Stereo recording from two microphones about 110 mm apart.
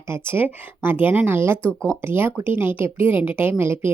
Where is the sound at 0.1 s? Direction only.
20° right (ahead or behind).